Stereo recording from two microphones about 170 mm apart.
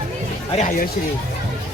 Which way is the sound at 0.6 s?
50° left (ahead or behind).